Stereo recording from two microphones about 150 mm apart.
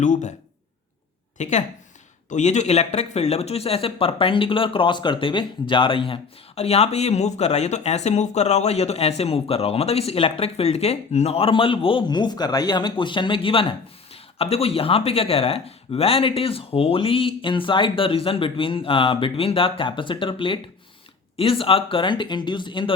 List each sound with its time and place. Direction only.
0.0 s speech: 55° left (ahead or behind)
1.4 s speech: 50° left (ahead or behind); by 22.9 s 30° left (ahead or behind)